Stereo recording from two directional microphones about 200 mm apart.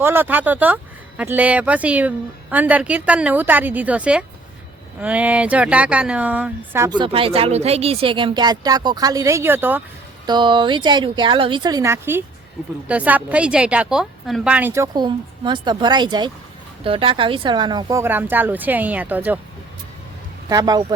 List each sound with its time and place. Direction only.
0.0 s speech: 10° right (ahead or behind)
10.2 s speech: 25° right (ahead or behind)
20.5 s speech: 15° right (ahead or behind)